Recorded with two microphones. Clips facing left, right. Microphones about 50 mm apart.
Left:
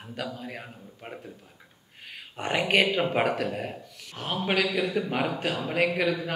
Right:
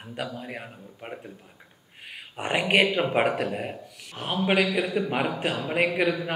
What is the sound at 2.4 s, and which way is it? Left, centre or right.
Speech, centre.